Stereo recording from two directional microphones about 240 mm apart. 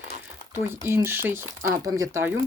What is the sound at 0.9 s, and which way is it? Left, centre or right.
Speech, centre.